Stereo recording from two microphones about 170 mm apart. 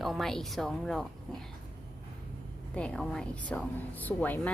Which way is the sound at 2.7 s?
5° left (ahead or behind).